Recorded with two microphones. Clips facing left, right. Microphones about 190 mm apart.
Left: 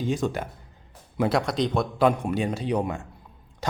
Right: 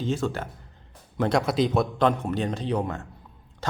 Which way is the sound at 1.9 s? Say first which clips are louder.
Left 1 dB; 10° left (ahead or behind).